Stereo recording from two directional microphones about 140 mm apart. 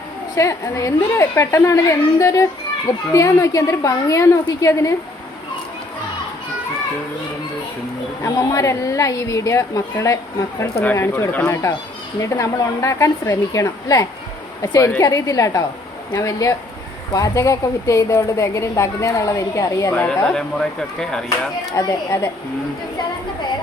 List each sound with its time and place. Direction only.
0.3 s a woman's voice: 20° left (ahead or behind)
8.2 s a woman's voice: 25° left (ahead or behind)
20.0 s speech: 5° left (ahead or behind)
21.8 s a woman's voice: 25° left (ahead or behind)